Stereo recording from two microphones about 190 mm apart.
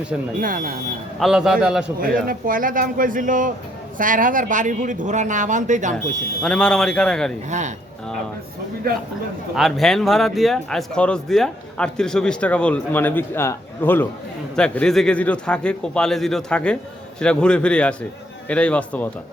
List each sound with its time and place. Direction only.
0.3 s speech: 45° right (ahead or behind)
1.2 s a man's voice: 5° right (ahead or behind)
2.0 s a man's voice: 50° right (ahead or behind)
6.4 s a man's voice: 5° left (ahead or behind)
9.6 s a man's voice: centre (ahead or behind)